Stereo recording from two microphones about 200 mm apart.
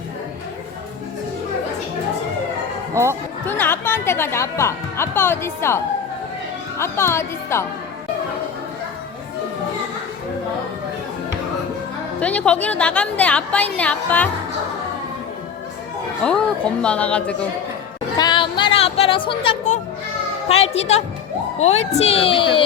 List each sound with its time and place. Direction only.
2.9 s speech: 15° right (ahead or behind)
3.4 s a woman's voice: 10° left (ahead or behind)
12.2 s a woman's voice: 5° left (ahead or behind)
16.2 s speech: 5° left (ahead or behind)
18.2 s music: 25° left (ahead or behind)
20.5 s a woman's voice: 30° left (ahead or behind)